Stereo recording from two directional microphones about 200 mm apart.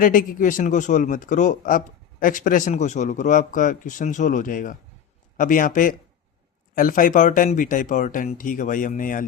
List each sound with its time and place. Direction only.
0.0 s speech: 45° left (ahead or behind)